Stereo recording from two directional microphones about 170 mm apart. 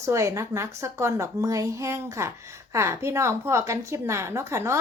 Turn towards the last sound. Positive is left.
turn(degrees=-15)  # may be behind; listen again after turning